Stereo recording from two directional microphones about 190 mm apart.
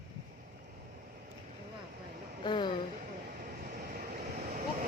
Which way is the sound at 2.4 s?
25° left (ahead or behind).